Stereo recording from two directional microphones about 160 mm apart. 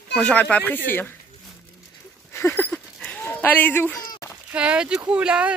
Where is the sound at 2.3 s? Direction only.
15° left (ahead or behind).